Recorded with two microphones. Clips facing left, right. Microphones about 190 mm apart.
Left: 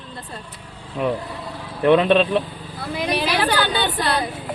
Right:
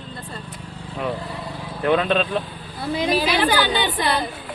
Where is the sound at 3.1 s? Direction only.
Centre (ahead or behind).